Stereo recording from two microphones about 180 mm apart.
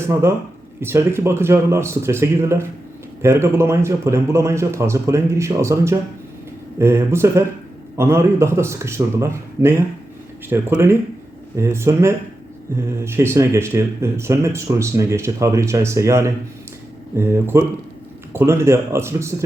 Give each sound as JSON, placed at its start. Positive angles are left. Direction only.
{"t": 0.0, "sound": "speech", "side_deg": -15}